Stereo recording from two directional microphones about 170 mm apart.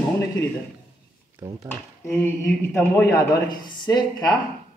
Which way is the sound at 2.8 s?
15° left (ahead or behind).